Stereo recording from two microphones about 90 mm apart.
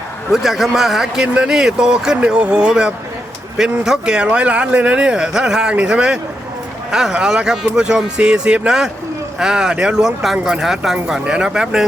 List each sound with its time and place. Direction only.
0.3 s speech: centre (ahead or behind)